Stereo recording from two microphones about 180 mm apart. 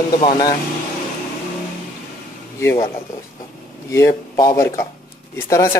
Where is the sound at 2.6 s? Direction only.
15° left (ahead or behind).